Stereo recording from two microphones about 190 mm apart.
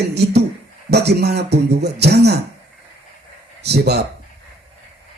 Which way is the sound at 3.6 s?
60° right (ahead or behind).